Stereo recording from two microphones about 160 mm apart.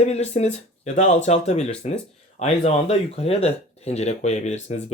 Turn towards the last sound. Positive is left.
turn(degrees=45)  # may be behind; listen again after turning